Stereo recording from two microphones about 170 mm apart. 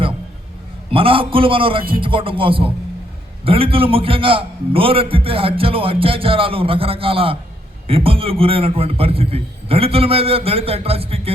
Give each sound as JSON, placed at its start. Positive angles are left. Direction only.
{"t": 0.9, "sound": "a man's voice", "side_deg": -30}